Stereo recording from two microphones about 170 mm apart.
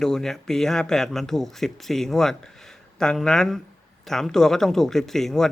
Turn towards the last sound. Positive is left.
turn(degrees=0)  # may be behind; listen again after turning